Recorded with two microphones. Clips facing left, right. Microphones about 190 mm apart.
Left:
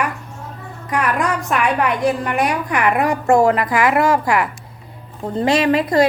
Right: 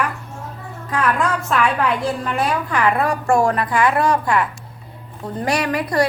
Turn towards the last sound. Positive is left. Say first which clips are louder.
# left 5 dB
turn(degrees=25)  # may be behind; listen again after turning